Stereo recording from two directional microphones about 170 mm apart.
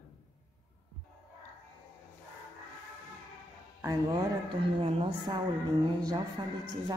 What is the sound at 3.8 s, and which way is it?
Speech, 20° right (ahead or behind).